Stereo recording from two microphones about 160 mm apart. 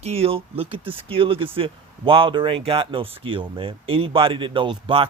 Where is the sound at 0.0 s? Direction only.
40° right (ahead or behind).